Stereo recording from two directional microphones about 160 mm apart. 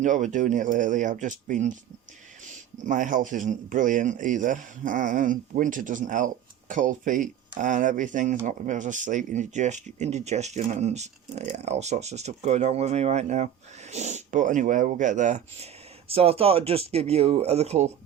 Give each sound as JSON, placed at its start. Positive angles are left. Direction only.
{"t": 0.0, "sound": "speech", "side_deg": -50}
{"t": 2.8, "sound": "speech", "side_deg": -55}